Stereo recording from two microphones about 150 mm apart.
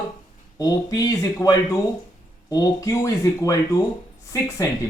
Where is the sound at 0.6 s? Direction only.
25° left (ahead or behind).